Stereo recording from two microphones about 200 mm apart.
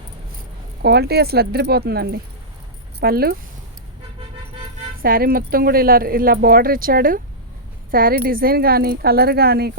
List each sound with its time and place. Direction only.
0.8 s speech: 55° right (ahead or behind)
4.9 s speech: 45° right (ahead or behind)